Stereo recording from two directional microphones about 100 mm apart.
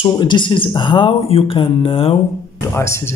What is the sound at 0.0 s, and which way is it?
Speech, 55° left (ahead or behind).